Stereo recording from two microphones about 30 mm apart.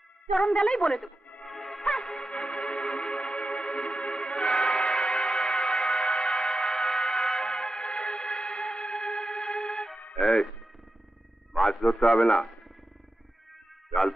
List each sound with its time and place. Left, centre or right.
0.4 s a woman's voice: left
1.5 s music: centre
1.8 s music: left
11.5 s a man's voice: left